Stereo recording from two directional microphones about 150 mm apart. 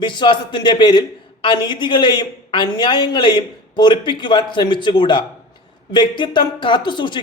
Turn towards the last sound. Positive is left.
turn(degrees=30)  # may be behind; listen again after turning